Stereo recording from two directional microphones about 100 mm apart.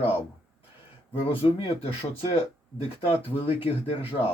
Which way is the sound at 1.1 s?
65° left (ahead or behind).